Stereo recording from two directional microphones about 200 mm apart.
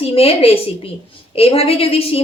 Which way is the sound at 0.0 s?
30° left (ahead or behind).